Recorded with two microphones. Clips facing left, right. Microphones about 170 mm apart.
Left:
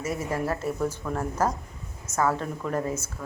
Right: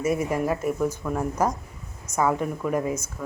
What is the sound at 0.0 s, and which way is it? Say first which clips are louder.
Speech: right 5 dB; 15° right (ahead or behind).